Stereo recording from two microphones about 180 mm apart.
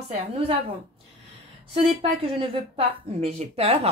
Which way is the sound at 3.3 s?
35° right (ahead or behind).